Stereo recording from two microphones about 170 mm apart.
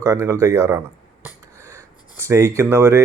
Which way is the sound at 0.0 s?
20° right (ahead or behind).